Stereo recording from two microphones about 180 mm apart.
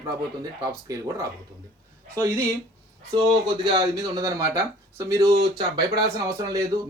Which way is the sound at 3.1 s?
20° right (ahead or behind).